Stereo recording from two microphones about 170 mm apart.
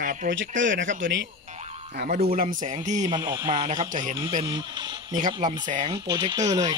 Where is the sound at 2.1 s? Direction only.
35° right (ahead or behind).